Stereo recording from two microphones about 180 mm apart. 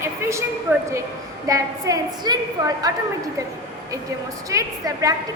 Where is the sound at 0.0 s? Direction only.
15° right (ahead or behind).